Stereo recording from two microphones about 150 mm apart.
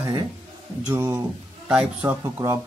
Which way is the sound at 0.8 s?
15° right (ahead or behind).